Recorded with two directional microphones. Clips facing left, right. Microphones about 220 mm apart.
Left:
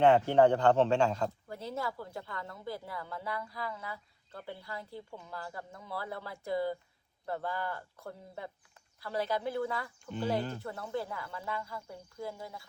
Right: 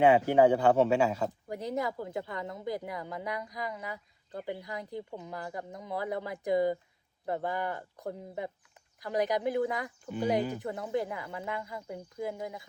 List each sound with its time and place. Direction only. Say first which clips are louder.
0.0 s speech: right 1 dB; 10° right (ahead or behind)